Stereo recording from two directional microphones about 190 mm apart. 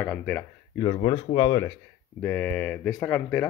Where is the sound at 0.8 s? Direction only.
25° left (ahead or behind).